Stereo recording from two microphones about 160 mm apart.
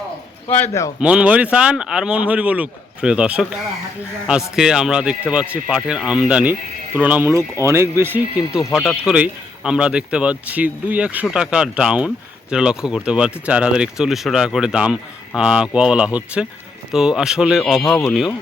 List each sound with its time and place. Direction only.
0.6 s a man's voice: 20° left (ahead or behind)
0.9 s speech: 5° right (ahead or behind)
8.7 s speech: centre (ahead or behind)